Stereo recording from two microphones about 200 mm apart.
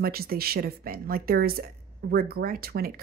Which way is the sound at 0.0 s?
50° right (ahead or behind).